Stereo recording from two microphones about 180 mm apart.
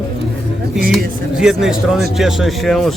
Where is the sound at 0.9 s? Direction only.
Centre (ahead or behind).